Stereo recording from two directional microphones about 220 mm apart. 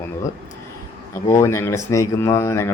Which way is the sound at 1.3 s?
10° left (ahead or behind).